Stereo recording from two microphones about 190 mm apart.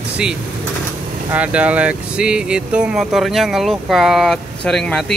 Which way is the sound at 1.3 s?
5° right (ahead or behind).